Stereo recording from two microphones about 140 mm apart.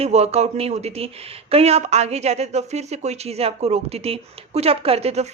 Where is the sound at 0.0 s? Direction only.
50° right (ahead or behind).